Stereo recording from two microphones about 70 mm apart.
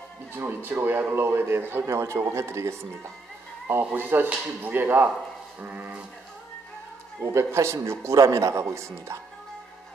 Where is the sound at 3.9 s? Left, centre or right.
Right.